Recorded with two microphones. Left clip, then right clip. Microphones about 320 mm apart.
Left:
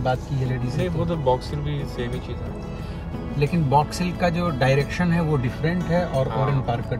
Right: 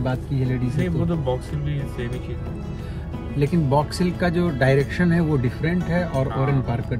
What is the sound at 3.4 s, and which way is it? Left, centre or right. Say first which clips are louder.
Speech: left 1 dB; centre.